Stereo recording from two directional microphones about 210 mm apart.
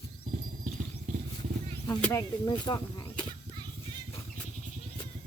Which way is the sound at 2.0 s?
10° left (ahead or behind).